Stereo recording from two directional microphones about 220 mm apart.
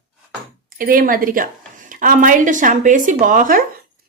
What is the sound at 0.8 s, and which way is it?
Speech, 40° right (ahead or behind).